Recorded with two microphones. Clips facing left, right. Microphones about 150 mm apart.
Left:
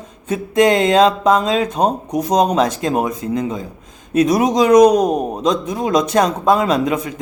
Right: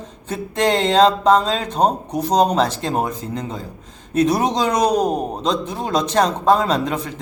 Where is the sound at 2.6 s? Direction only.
10° left (ahead or behind).